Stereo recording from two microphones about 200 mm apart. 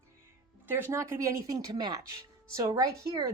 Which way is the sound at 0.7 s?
10° right (ahead or behind).